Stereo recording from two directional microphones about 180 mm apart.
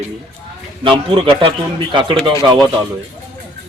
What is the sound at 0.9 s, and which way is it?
A man's voice, 25° right (ahead or behind).